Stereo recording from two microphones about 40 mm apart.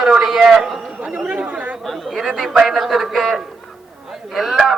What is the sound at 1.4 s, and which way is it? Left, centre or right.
Speech, right.